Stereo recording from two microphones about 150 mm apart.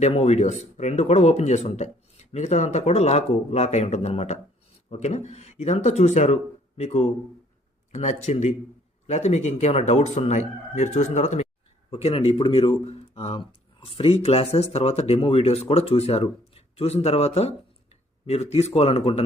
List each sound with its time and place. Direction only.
0.0 s speech: 45° left (ahead or behind)